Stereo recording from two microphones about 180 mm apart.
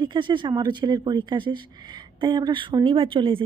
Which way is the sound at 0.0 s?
25° right (ahead or behind).